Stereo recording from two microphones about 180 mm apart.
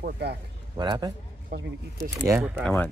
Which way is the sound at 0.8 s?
20° right (ahead or behind).